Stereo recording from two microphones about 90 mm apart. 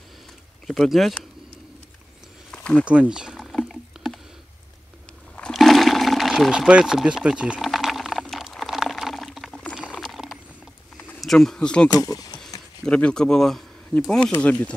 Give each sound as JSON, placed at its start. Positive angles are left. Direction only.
{"t": 0.7, "sound": "speech", "side_deg": 0}
{"t": 2.5, "sound": "a sound", "side_deg": 10}
{"t": 2.8, "sound": "speech", "side_deg": -15}
{"t": 3.5, "sound": "rowboat", "side_deg": 5}
{"t": 5.5, "sound": "toilet flush", "side_deg": 0}
{"t": 6.7, "sound": "speech", "side_deg": -10}
{"t": 7.6, "sound": "a sound", "side_deg": 0}
{"t": 11.1, "sound": "speech", "side_deg": 5}
{"t": 11.9, "sound": "speech", "side_deg": 40}
{"t": 12.8, "sound": "a man's voice", "side_deg": 10}